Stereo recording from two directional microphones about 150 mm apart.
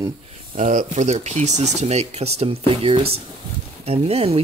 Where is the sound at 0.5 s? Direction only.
55° right (ahead or behind).